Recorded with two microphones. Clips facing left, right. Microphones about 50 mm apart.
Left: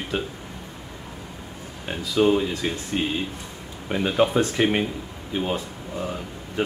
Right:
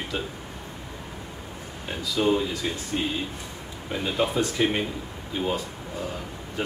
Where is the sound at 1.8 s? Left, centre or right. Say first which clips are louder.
Left 4 dB; left.